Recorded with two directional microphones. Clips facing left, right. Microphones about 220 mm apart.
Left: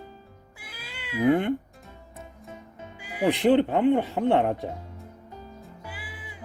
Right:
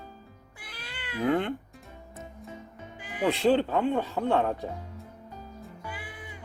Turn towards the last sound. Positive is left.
turn(degrees=5)  # may be behind; listen again after turning